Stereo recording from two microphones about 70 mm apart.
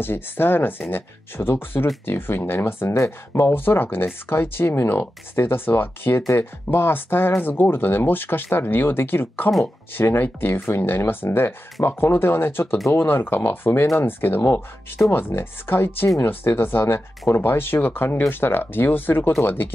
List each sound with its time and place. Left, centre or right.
0.0 s speech: left